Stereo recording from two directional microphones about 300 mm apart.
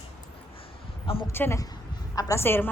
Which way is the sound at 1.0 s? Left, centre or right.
Centre.